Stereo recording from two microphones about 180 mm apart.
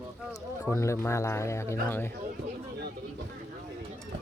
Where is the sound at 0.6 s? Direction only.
15° left (ahead or behind).